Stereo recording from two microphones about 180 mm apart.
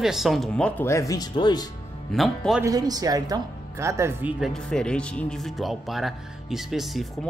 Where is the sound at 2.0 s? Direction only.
Centre (ahead or behind).